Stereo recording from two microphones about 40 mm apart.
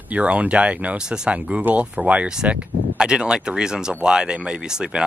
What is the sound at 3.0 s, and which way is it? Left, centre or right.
Speech, centre.